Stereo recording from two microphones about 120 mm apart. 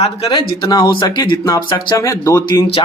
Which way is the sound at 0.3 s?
40° left (ahead or behind).